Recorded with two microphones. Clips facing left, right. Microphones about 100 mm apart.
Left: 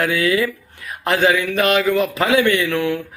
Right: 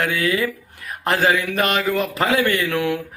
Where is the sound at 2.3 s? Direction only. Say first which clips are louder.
Left 4 dB; 40° right (ahead or behind).